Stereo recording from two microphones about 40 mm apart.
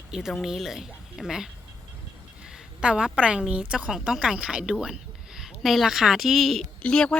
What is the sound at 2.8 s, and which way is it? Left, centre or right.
A woman's voice, right.